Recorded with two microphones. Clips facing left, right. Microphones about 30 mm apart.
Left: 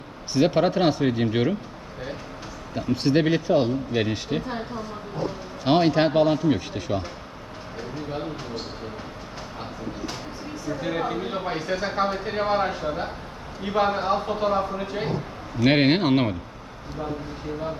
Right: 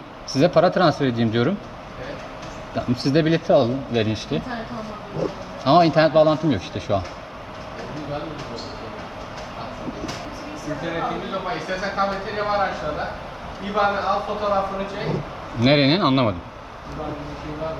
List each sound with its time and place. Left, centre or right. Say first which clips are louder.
0.3 s speech: right 4 dB; centre
2.7 s speech: right 2 dB; centre
5.6 s speech: right 4 dB; centre
10.8 s speech: right 1 dB; centre
15.6 s speech: right 2 dB; centre